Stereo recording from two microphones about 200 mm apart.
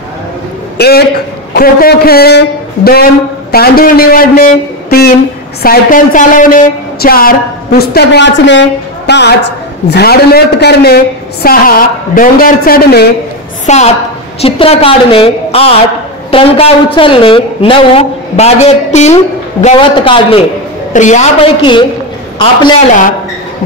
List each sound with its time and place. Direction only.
0.7 s a man's voice: 55° left (ahead or behind)
13.7 s a woman's voice: 35° left (ahead or behind)